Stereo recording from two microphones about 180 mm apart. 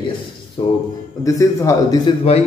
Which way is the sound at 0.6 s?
25° left (ahead or behind).